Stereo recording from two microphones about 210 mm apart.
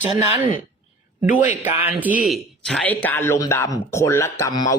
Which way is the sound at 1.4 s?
10° right (ahead or behind).